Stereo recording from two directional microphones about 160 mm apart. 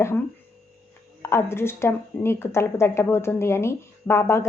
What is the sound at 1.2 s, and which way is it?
Speech, 15° left (ahead or behind).